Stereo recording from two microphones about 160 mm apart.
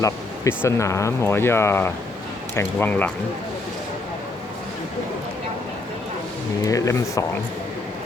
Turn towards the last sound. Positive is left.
turn(degrees=20)  # may be behind; listen again after turning